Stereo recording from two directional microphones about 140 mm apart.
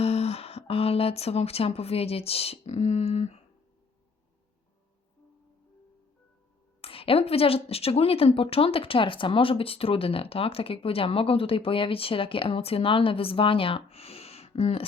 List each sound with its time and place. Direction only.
0.0 s speech: 50° left (ahead or behind)
6.8 s speech: 40° left (ahead or behind)